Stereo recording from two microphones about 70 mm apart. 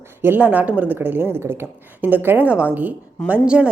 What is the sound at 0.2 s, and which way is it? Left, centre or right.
A woman's voice, right.